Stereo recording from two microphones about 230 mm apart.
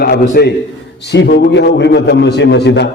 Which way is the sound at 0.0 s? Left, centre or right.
Left.